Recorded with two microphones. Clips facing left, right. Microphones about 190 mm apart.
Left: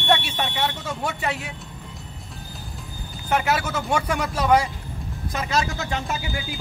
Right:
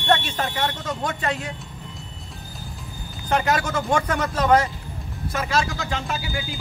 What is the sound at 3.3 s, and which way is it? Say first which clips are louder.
Speech: right 1 dB; 5° left (ahead or behind).